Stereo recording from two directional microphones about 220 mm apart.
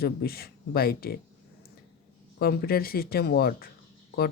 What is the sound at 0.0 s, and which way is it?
Speech, 45° left (ahead or behind).